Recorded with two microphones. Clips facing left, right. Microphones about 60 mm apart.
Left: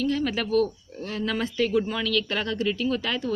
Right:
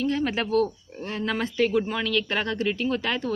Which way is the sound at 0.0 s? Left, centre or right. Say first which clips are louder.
Even; right.